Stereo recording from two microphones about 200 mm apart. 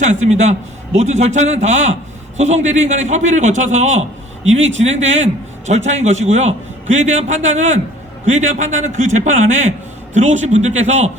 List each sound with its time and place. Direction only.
0.0 s a man's voice: 35° right (ahead or behind)